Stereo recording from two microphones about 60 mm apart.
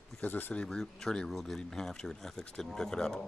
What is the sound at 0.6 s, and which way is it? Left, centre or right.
Speech, centre.